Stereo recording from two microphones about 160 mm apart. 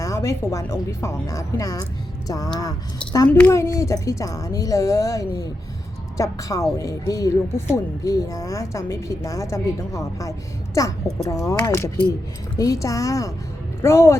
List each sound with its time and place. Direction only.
0.0 s a woman's voice: 20° left (ahead or behind)
3.2 s speech: 5° left (ahead or behind)
3.5 s a woman's voice: 20° left (ahead or behind)